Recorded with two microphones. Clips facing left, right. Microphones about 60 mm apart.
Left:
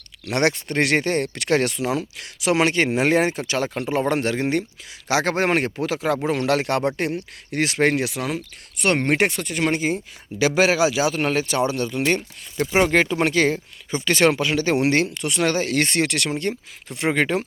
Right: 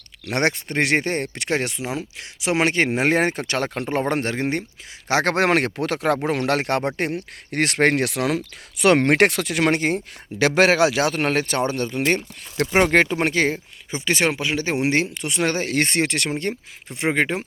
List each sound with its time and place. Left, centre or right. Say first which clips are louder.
0.3 s speech: left 1 dB; right
5.2 s speech: right 3 dB; right
6.2 s speech: left 1 dB; right
7.1 s speech: even; right
13.1 s speech: left 1 dB; right